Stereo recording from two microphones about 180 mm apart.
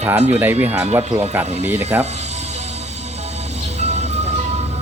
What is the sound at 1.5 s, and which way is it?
Speech, 40° right (ahead or behind).